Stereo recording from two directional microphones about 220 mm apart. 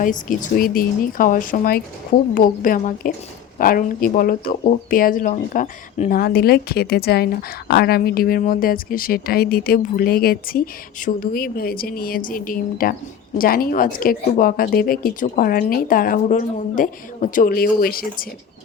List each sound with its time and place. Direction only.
0.0 s speech: 35° left (ahead or behind)